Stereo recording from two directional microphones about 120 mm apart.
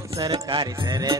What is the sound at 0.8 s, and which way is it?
Music, 30° right (ahead or behind).